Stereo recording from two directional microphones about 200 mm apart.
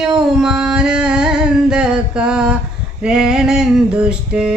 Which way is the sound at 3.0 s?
5° right (ahead or behind).